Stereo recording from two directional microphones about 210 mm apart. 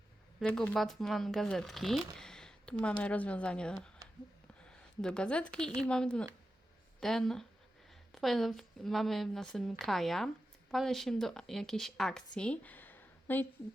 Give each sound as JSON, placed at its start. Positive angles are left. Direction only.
{"t": 0.3, "sound": "a woman's voice", "side_deg": 5}
{"t": 2.1, "sound": "a sound", "side_deg": 5}
{"t": 3.0, "sound": "a woman's voice", "side_deg": 5}